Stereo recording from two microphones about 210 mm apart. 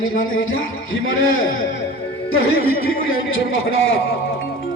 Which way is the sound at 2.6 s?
45° left (ahead or behind).